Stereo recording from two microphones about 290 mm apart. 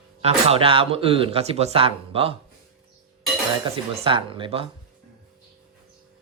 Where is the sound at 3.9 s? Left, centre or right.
Centre.